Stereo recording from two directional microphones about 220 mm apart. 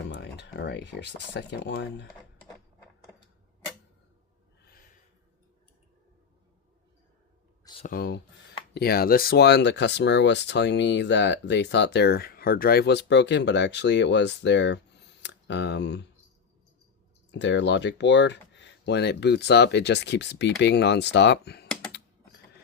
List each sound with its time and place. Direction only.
0.0 s speech: 50° left (ahead or behind)
7.9 s speech: 45° left (ahead or behind)
17.3 s speech: 55° left (ahead or behind)